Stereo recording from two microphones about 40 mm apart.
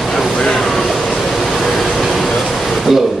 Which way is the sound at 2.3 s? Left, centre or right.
Centre.